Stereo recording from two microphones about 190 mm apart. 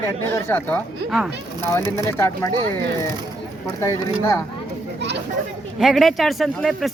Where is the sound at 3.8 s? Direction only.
15° left (ahead or behind).